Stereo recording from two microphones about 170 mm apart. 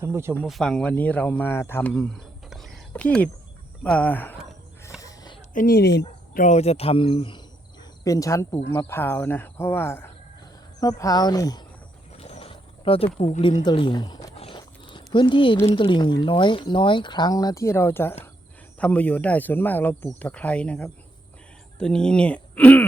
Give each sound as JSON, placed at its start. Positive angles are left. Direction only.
{"t": 0.0, "sound": "speech", "side_deg": -15}
{"t": 0.4, "sound": "speech", "side_deg": 0}
{"t": 1.9, "sound": "cricket", "side_deg": 0}
{"t": 3.8, "sound": "speech", "side_deg": 10}
{"t": 4.9, "sound": "a sound", "side_deg": 20}
{"t": 5.5, "sound": "speech", "side_deg": 65}
{"t": 6.3, "sound": "speech", "side_deg": 45}
{"t": 12.1, "sound": "wild animals", "side_deg": 35}
{"t": 13.7, "sound": "speech", "side_deg": 25}
{"t": 14.3, "sound": "a sound", "side_deg": 30}
{"t": 15.6, "sound": "speech", "side_deg": 30}